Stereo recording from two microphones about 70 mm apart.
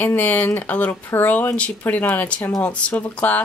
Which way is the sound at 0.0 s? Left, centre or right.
Left.